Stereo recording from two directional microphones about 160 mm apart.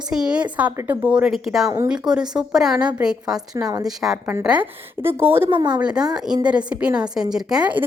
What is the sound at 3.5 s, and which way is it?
Speech, 20° right (ahead or behind).